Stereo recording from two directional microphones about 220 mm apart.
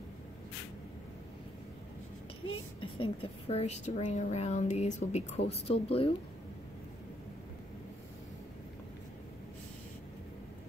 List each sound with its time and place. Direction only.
2.8 s a woman's voice: 25° left (ahead or behind)